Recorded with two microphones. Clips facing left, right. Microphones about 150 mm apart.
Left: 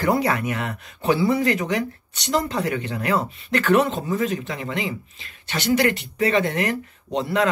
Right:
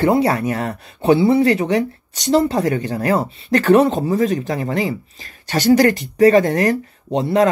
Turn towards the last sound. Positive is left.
turn(degrees=-35)  # may be behind; listen again after turning